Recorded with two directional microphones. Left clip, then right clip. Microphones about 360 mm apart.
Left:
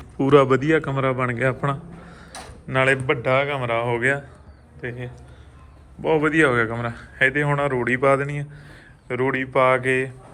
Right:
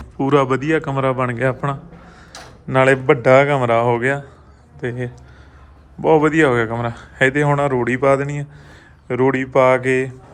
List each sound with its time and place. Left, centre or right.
0.2 s speech: centre
2.3 s tick-tock: centre
2.6 s speech: centre